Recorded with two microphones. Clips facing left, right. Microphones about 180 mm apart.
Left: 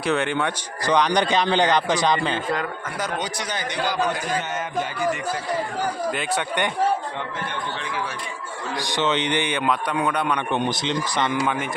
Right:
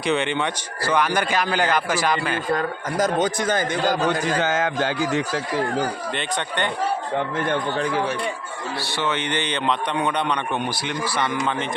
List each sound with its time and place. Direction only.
0.0 s speech: 5° left (ahead or behind)
1.3 s speech: 20° left (ahead or behind)
3.0 s a man's voice: 50° right (ahead or behind)
4.0 s a man's voice: 90° right
6.1 s speech: 5° left (ahead or behind)
7.4 s a man's voice: 55° right (ahead or behind)
8.8 s speech: 15° left (ahead or behind)
10.5 s speech: 20° left (ahead or behind)